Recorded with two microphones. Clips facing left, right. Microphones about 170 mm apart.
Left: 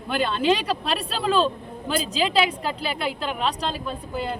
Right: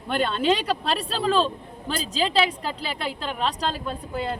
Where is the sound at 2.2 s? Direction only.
35° right (ahead or behind).